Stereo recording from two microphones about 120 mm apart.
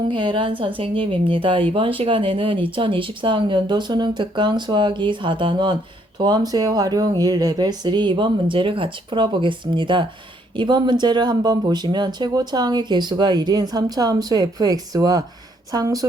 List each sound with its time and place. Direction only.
0.1 s a woman's voice: 45° right (ahead or behind)